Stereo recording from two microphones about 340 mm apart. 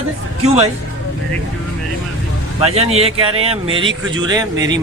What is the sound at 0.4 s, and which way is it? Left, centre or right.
Speech, centre.